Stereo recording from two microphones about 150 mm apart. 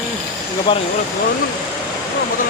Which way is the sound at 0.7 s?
30° left (ahead or behind).